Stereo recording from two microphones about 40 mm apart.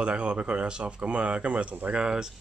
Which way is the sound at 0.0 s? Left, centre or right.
Right.